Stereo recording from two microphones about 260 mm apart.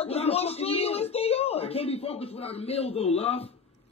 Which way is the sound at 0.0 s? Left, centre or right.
Left.